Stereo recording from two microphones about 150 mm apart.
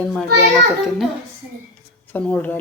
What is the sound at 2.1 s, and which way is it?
Speech, 10° left (ahead or behind).